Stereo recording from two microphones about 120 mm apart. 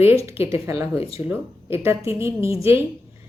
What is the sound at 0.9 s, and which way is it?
Speech, 55° left (ahead or behind).